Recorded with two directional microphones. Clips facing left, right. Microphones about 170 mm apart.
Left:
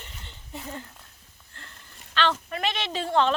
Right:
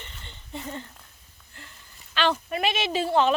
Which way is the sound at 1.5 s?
10° right (ahead or behind).